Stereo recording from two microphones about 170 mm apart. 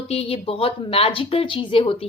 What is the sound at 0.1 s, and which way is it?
A woman's voice, 35° left (ahead or behind).